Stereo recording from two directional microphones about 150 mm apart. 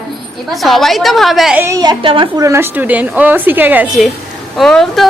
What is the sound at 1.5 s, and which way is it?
Speech, 20° right (ahead or behind).